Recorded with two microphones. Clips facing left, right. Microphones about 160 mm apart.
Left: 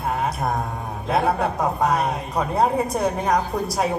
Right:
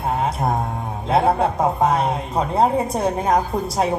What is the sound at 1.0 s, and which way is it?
A woman's voice, 25° right (ahead or behind).